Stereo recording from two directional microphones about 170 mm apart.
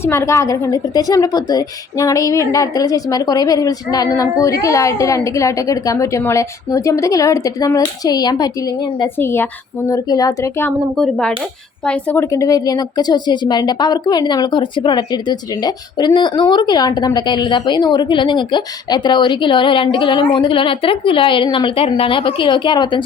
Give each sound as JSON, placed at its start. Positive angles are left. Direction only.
{"t": 0.0, "sound": "a woman's voice", "side_deg": 15}
{"t": 10.9, "sound": "a woman's voice", "side_deg": 5}